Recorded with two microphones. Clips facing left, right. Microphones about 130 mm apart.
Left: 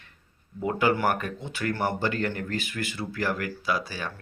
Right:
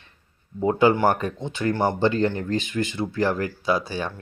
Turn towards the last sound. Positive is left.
turn(degrees=-25)  # may be behind; listen again after turning